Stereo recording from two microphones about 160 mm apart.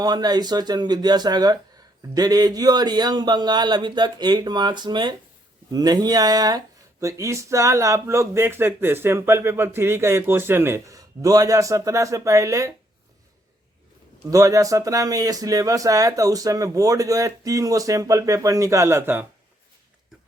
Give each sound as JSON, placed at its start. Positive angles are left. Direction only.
{"t": 0.0, "sound": "speech", "side_deg": -25}
{"t": 14.3, "sound": "speech", "side_deg": -20}